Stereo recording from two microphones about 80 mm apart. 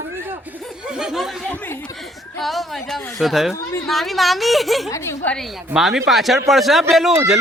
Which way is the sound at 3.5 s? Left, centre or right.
Left.